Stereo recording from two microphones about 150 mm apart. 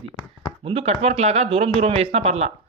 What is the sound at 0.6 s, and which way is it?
Speech, 40° right (ahead or behind).